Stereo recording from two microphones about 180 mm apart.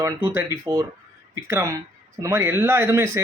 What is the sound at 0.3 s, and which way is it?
Speech, 15° right (ahead or behind).